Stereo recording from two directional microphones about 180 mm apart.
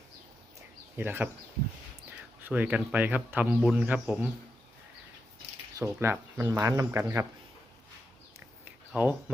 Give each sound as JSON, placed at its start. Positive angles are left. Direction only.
{"t": 0.9, "sound": "speech", "side_deg": -10}
{"t": 2.4, "sound": "a man's voice", "side_deg": -10}
{"t": 5.8, "sound": "speech", "side_deg": -15}
{"t": 8.6, "sound": "a sound", "side_deg": -10}